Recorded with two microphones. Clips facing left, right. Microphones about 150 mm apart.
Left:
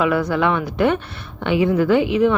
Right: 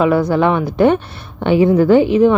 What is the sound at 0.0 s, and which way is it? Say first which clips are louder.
Speech: right 5 dB; 35° right (ahead or behind).